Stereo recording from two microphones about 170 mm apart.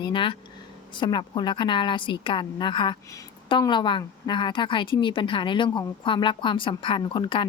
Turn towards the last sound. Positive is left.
turn(degrees=30)  # may be behind; listen again after turning